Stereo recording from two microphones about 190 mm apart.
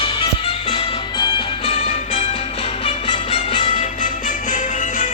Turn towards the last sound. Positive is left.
turn(degrees=45)  # may be behind; listen again after turning